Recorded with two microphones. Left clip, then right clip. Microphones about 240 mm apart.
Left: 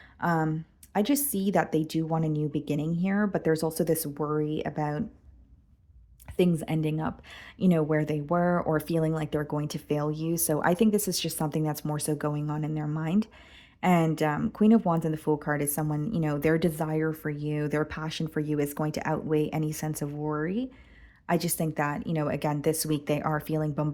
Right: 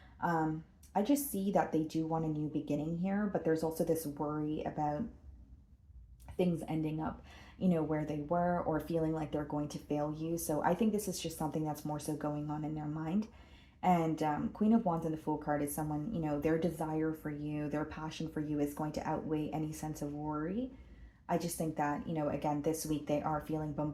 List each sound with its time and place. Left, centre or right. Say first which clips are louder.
0.2 s speech: left 6 dB; left
6.3 s speech: left 8 dB; left